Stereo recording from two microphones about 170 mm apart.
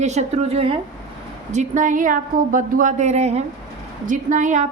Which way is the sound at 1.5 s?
45° right (ahead or behind).